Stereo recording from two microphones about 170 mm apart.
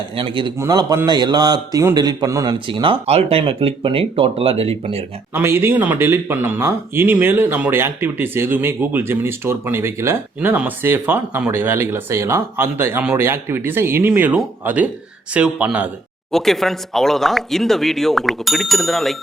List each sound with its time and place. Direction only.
0.2 s a man's voice: 30° right (ahead or behind)
5.3 s speech: 15° right (ahead or behind)
16.3 s speech: centre (ahead or behind)